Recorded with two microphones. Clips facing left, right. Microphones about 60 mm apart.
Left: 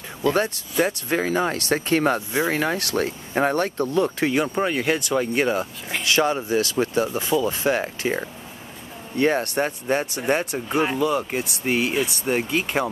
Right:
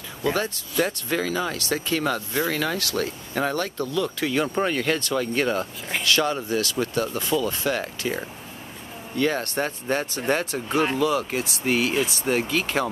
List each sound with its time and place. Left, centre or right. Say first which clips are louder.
0.7 s speech: left 2 dB; left
4.6 s speech: left 1 dB; centre; by 9.7 s left
9.7 s speech: left 2 dB; centre